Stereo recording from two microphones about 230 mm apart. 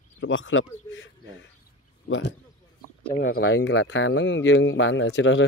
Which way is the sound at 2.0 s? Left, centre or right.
Left.